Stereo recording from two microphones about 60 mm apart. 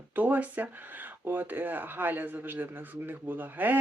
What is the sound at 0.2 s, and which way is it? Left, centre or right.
Speech, right.